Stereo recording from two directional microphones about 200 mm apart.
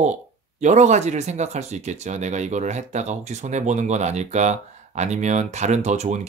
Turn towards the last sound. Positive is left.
turn(degrees=-35)  # may be behind; listen again after turning